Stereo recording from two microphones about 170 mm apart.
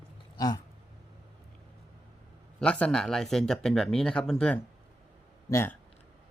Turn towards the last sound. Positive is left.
turn(degrees=15)  # may be behind; listen again after turning